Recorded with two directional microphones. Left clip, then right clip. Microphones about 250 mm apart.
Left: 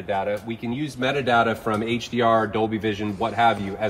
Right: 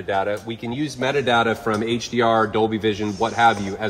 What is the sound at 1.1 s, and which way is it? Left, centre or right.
Speech, centre.